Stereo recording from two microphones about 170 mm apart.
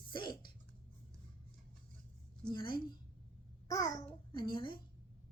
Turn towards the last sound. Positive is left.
turn(degrees=30)  # may be behind; listen again after turning